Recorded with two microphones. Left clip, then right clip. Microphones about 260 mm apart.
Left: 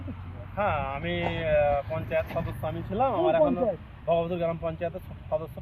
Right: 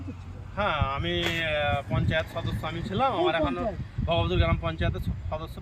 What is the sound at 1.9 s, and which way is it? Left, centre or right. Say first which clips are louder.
Speech: left 1 dB; centre.